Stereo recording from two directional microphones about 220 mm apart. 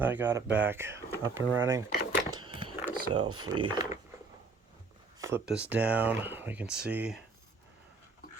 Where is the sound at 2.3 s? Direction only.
20° right (ahead or behind).